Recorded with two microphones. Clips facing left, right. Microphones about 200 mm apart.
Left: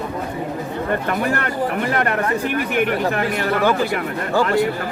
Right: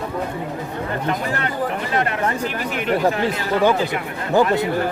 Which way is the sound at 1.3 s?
60° left (ahead or behind).